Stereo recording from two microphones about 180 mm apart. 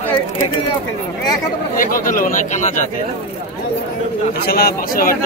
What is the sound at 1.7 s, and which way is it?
Speech, 50° left (ahead or behind).